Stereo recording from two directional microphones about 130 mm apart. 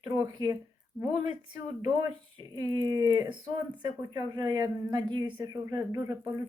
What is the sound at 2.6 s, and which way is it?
Speech, 30° right (ahead or behind).